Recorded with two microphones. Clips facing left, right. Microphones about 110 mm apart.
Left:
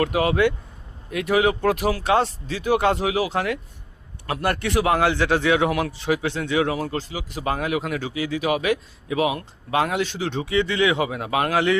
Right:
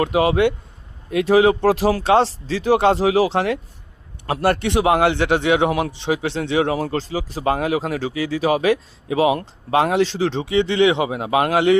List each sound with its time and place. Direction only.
0.0 s a man's voice: 25° right (ahead or behind)